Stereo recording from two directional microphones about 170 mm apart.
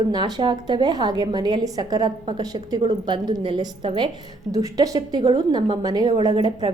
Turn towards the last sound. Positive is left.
turn(degrees=-25)  # may be behind; listen again after turning